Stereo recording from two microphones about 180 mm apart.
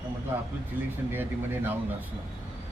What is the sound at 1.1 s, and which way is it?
Speech, 10° right (ahead or behind).